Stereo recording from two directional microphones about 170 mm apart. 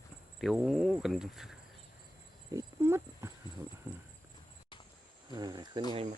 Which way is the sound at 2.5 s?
15° right (ahead or behind).